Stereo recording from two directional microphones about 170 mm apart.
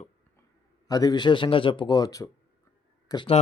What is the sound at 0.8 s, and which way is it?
A man's voice, 20° left (ahead or behind).